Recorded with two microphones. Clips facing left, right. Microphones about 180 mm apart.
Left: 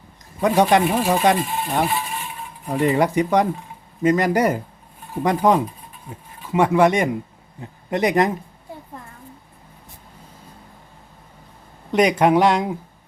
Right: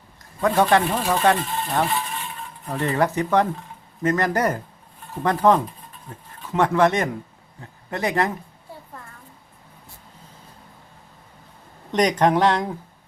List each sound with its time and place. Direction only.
0.3 s a man's voice: 15° left (ahead or behind)
11.9 s speech: 10° left (ahead or behind)